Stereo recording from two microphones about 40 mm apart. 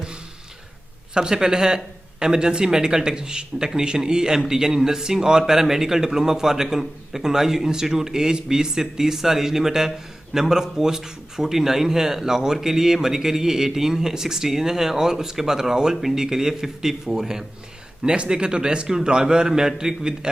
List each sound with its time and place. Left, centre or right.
1.1 s a man's voice: centre